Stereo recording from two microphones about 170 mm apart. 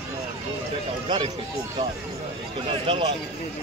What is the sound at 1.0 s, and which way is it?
Speech, 25° right (ahead or behind).